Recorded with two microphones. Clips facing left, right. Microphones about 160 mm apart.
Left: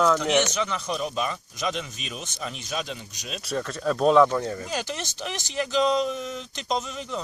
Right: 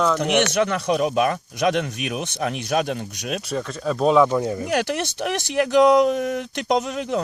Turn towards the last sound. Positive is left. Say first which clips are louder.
# right 7 dB
turn(degrees=-65)  # may be behind; listen again after turning